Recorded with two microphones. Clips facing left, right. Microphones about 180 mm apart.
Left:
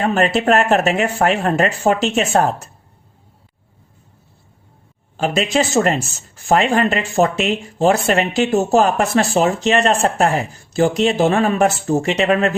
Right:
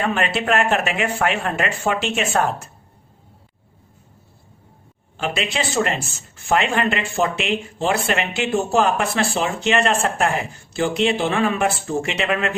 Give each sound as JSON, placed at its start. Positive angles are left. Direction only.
{"t": 0.0, "sound": "speech", "side_deg": 40}
{"t": 5.1, "sound": "speech", "side_deg": 40}